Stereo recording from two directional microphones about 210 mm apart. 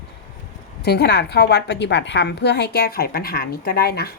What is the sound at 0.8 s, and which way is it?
A woman's voice, 50° left (ahead or behind).